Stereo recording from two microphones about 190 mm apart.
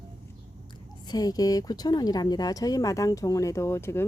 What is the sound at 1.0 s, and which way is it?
Speech, 20° left (ahead or behind).